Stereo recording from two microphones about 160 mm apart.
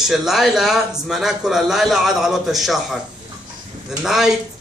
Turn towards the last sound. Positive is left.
turn(degrees=-5)  # may be behind; listen again after turning